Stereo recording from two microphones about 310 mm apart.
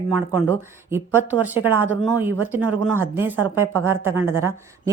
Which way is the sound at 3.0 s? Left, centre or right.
Centre.